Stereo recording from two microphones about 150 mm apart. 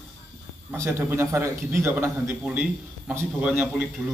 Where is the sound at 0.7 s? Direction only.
20° right (ahead or behind).